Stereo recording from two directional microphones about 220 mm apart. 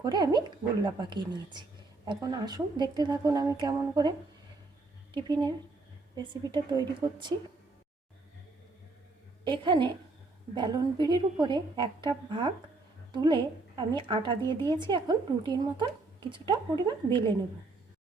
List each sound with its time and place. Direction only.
0.0 s a woman's voice: 20° right (ahead or behind)
5.1 s a woman's voice: 20° right (ahead or behind)
9.4 s a woman's voice: 20° right (ahead or behind)